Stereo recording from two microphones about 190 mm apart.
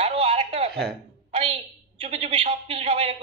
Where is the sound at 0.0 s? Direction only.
30° right (ahead or behind).